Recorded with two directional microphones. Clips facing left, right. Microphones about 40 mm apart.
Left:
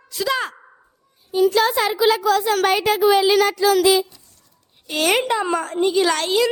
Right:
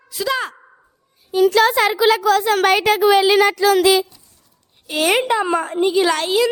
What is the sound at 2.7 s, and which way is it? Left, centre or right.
A woman's voice, right.